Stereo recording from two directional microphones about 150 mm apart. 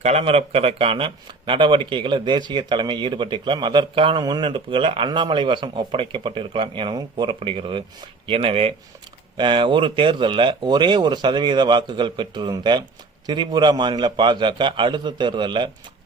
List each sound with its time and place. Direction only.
0.0 s speech: 45° right (ahead or behind)